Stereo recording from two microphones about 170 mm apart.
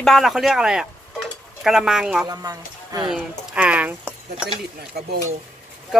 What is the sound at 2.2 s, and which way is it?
Speech, 20° right (ahead or behind).